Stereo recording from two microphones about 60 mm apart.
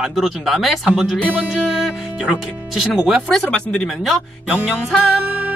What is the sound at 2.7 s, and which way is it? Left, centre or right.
Speech, centre.